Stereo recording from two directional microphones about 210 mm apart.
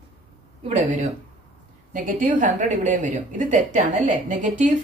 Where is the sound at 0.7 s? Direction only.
35° right (ahead or behind).